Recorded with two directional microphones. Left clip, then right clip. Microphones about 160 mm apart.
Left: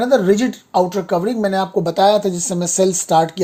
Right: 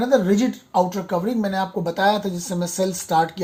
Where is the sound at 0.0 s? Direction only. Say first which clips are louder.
Left 4 dB; 70° left (ahead or behind).